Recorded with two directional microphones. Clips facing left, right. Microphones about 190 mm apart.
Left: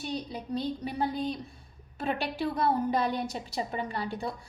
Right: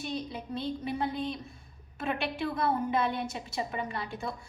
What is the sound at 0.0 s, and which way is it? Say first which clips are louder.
A woman's voice: left 1 dB; 35° left (ahead or behind).